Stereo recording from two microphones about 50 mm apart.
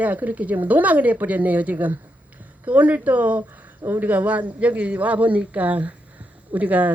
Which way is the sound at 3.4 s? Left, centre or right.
Right.